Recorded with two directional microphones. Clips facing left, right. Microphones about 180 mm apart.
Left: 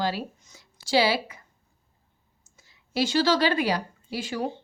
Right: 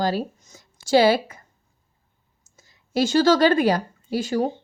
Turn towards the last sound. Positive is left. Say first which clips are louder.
# right 7 dB
turn(degrees=-45)  # may be behind; listen again after turning